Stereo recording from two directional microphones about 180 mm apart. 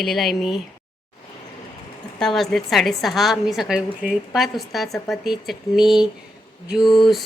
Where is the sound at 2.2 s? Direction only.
Centre (ahead or behind).